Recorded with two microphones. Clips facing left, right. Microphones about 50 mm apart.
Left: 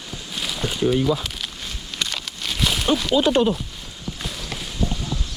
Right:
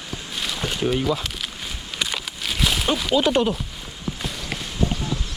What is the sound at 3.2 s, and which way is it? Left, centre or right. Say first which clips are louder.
Speech: left 2 dB; right.